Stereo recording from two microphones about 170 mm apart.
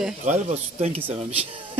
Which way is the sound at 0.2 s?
45° right (ahead or behind).